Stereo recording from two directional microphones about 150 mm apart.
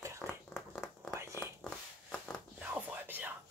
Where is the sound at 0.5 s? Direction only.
5° left (ahead or behind).